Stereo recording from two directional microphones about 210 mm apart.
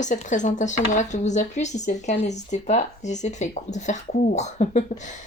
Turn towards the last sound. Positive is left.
turn(degrees=35)  # may be behind; listen again after turning